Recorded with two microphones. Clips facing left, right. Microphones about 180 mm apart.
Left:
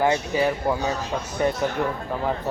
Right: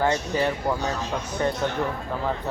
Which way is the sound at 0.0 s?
10° left (ahead or behind).